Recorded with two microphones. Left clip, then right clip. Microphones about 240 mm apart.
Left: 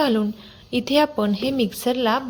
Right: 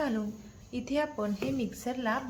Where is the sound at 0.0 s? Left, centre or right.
Left.